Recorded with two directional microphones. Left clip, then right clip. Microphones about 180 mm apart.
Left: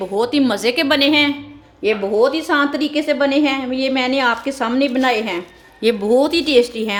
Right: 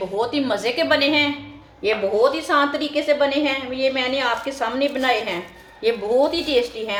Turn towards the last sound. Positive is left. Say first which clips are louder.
# left 6 dB
turn(degrees=65)  # may be behind; listen again after turning